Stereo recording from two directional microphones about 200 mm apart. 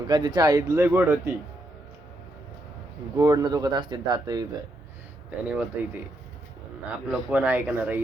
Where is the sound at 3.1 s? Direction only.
15° right (ahead or behind).